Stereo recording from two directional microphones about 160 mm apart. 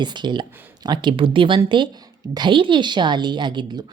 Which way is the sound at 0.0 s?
30° right (ahead or behind).